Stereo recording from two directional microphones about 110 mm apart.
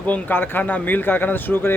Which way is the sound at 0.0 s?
15° left (ahead or behind).